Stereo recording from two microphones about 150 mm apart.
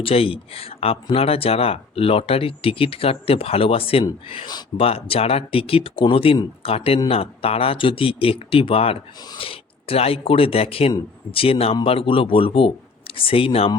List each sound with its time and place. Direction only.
0.0 s speech: 40° left (ahead or behind)